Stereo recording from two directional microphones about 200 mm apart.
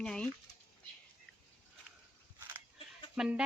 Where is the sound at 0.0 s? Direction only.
5° left (ahead or behind).